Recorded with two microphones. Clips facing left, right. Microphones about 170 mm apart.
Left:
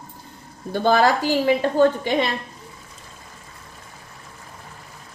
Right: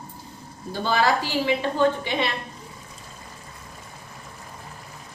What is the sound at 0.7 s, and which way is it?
Speech, 50° left (ahead or behind).